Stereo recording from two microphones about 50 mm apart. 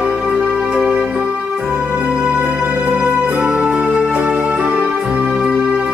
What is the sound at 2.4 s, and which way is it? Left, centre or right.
Music, right.